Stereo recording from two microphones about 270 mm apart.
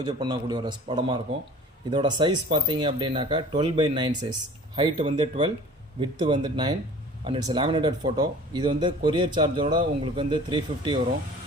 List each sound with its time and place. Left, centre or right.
0.0 s speech: centre